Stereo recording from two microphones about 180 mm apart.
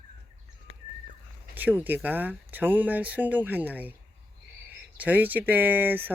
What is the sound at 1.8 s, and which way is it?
Speech, 10° right (ahead or behind).